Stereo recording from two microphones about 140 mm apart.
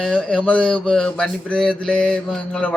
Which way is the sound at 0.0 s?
5° left (ahead or behind).